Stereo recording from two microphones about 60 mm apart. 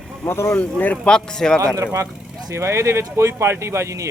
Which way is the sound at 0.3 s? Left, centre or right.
Left.